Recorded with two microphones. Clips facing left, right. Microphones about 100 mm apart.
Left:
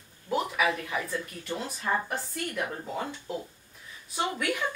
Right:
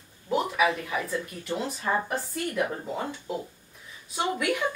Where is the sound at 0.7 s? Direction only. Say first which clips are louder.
Right 2 dB; 20° right (ahead or behind).